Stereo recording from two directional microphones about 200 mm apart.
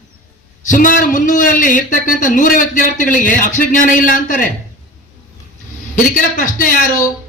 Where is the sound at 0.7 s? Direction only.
40° left (ahead or behind).